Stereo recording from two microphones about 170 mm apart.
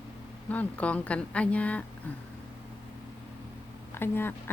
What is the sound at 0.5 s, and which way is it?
Speech, 10° left (ahead or behind).